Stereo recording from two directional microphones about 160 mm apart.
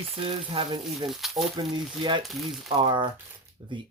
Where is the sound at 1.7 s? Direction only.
30° right (ahead or behind).